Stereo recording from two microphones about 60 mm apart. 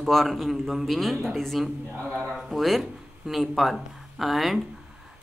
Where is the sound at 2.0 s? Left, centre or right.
Right.